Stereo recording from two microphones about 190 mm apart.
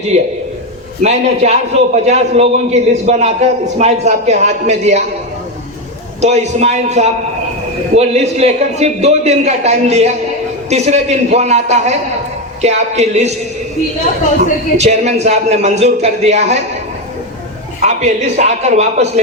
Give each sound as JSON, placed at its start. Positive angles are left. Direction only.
{"t": 0.1, "sound": "a man's voice", "side_deg": -35}
{"t": 6.2, "sound": "a man's voice", "side_deg": -35}
{"t": 14.8, "sound": "a man's voice", "side_deg": -35}
{"t": 17.8, "sound": "a man's voice", "side_deg": -35}